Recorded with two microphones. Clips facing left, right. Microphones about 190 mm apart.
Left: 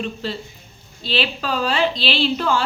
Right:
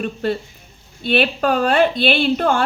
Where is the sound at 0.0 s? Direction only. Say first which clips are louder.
Right 5 dB; 55° right (ahead or behind).